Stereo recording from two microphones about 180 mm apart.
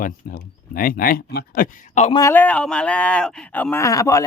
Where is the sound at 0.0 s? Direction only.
50° left (ahead or behind).